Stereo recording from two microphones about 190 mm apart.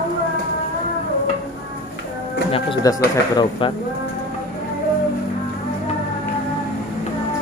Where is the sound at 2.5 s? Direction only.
25° left (ahead or behind).